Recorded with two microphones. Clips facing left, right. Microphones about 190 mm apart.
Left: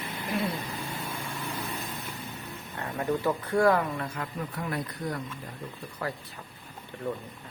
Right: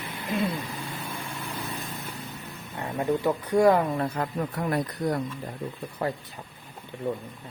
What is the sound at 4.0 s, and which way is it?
Speech, 40° right (ahead or behind).